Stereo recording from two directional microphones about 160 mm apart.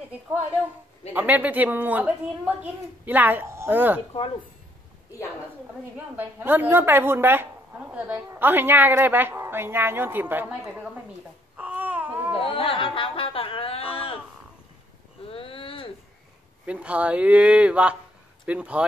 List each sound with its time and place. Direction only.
1.1 s a woman's voice: 10° right (ahead or behind)
5.9 s a woman's voice: 10° right (ahead or behind)
11.5 s babbling: 10° right (ahead or behind)
12.4 s speech: 35° left (ahead or behind)
15.2 s a sound: 35° left (ahead or behind)
16.6 s a woman's voice: 10° right (ahead or behind)